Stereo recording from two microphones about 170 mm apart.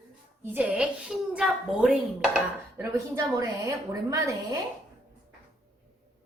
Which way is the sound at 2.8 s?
20° right (ahead or behind).